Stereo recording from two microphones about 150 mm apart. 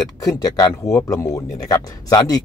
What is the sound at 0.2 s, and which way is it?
Speech, 25° left (ahead or behind).